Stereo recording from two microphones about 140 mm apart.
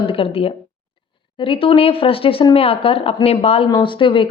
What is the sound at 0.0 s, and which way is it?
A woman's voice, 40° left (ahead or behind).